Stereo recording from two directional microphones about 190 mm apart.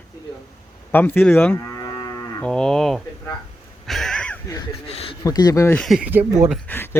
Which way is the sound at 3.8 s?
Centre (ahead or behind).